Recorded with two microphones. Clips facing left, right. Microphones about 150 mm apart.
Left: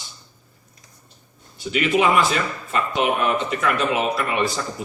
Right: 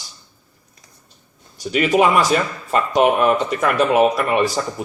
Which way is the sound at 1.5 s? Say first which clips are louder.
Right 4 dB; 40° right (ahead or behind).